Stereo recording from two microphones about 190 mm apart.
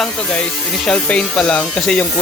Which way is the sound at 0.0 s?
5° left (ahead or behind).